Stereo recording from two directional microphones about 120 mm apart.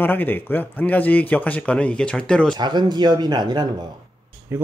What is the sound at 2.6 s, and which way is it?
Speech, 35° right (ahead or behind).